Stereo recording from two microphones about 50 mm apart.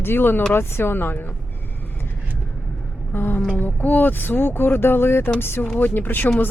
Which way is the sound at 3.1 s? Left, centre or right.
Left.